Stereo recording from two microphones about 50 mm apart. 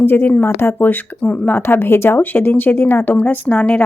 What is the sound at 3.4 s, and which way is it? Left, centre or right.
Speech, left.